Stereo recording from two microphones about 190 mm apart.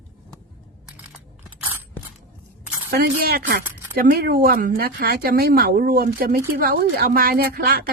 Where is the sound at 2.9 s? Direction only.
55° right (ahead or behind).